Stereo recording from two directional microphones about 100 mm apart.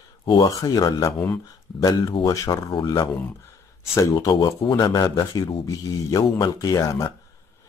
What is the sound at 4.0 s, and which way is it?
A man's voice, 40° left (ahead or behind).